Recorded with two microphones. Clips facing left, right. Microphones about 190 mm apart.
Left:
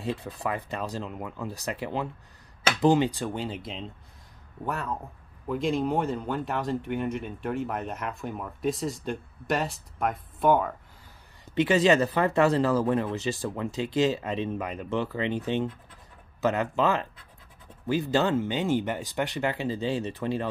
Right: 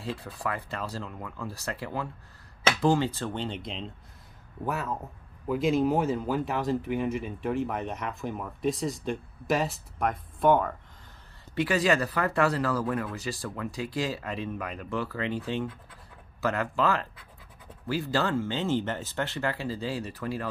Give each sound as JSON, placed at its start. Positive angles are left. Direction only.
{"t": 0.0, "sound": "speech", "side_deg": 20}
{"t": 11.5, "sound": "speech", "side_deg": 20}